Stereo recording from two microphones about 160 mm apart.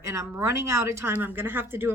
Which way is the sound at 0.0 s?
20° right (ahead or behind).